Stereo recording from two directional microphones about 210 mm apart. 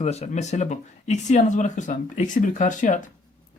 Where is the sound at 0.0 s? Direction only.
30° left (ahead or behind).